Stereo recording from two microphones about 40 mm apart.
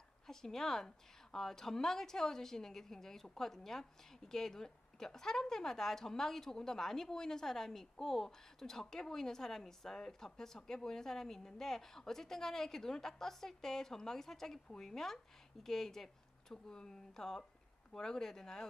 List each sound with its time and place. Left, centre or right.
0.3 s speech: centre